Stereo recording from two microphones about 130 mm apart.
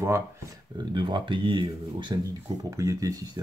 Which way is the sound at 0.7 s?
35° right (ahead or behind).